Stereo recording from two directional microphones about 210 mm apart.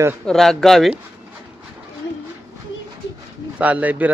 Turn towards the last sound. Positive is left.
turn(degrees=-5)  # may be behind; listen again after turning